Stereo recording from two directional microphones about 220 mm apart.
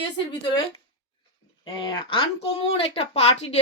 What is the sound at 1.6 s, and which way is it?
A woman's voice, 20° left (ahead or behind).